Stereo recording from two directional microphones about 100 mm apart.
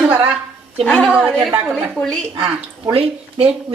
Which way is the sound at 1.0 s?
10° right (ahead or behind).